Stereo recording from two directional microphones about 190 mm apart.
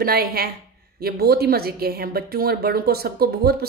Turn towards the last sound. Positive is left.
turn(degrees=-55)  # may be behind; listen again after turning